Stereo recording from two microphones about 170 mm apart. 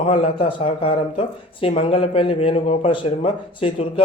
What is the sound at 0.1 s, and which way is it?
A man's voice, 30° left (ahead or behind).